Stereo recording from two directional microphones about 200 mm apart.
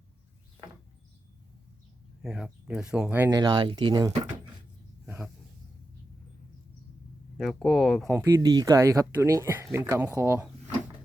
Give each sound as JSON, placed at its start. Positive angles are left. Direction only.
{"t": 2.2, "sound": "speech", "side_deg": -5}
{"t": 5.0, "sound": "a sound", "side_deg": -5}
{"t": 7.3, "sound": "speech", "side_deg": 0}
{"t": 8.1, "sound": "speech", "side_deg": -15}